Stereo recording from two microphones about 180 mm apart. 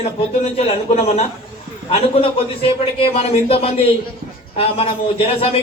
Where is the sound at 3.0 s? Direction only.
35° left (ahead or behind).